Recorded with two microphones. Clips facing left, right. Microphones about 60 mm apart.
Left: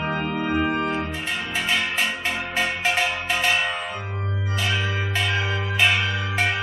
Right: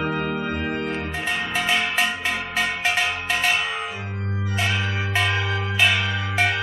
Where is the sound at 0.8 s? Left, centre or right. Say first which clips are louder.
Left 3 dB; centre.